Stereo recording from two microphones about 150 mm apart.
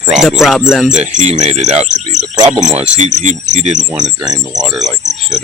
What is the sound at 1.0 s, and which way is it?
Speech, 50° right (ahead or behind).